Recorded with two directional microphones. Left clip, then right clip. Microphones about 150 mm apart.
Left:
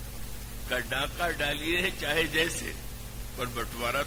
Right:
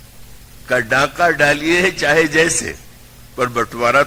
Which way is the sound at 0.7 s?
20° left (ahead or behind).